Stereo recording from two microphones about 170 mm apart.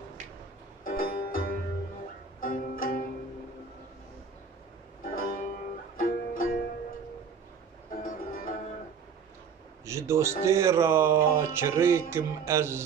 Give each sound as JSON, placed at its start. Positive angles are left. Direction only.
{"t": 0.8, "sound": "music", "side_deg": 55}
{"t": 5.0, "sound": "music", "side_deg": 55}
{"t": 8.0, "sound": "music", "side_deg": 55}
{"t": 9.8, "sound": "a man's voice", "side_deg": -15}
{"t": 10.4, "sound": "music", "side_deg": -15}